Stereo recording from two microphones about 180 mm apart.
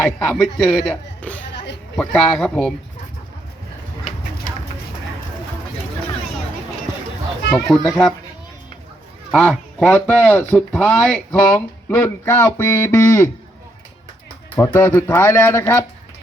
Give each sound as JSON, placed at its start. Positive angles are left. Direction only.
{"t": 0.0, "sound": "a man's voice", "side_deg": 5}
{"t": 1.5, "sound": "a sound", "side_deg": 75}
{"t": 2.0, "sound": "a man's voice", "side_deg": 5}
{"t": 7.7, "sound": "a man's voice", "side_deg": 0}
{"t": 9.3, "sound": "speech", "side_deg": 5}
{"t": 14.5, "sound": "speech", "side_deg": 10}